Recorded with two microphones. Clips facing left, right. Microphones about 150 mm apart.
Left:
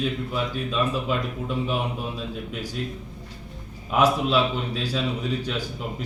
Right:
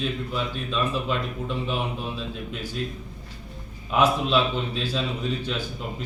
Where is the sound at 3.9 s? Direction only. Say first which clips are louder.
Left 1 dB; 10° left (ahead or behind).